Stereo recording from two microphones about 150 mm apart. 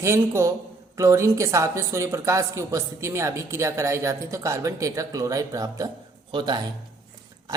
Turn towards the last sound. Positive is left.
turn(degrees=-30)  # may be behind; listen again after turning